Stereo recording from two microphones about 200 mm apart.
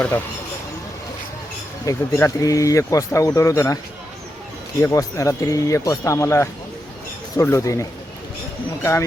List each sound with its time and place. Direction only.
1.8 s speech: 15° left (ahead or behind)
4.8 s speech: 15° left (ahead or behind)